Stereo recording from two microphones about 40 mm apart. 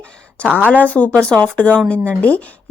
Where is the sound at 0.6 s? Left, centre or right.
Right.